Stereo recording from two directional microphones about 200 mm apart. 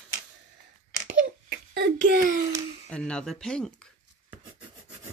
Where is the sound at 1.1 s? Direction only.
50° right (ahead or behind).